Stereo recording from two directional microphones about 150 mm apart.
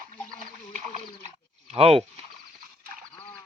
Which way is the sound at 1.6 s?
40° right (ahead or behind).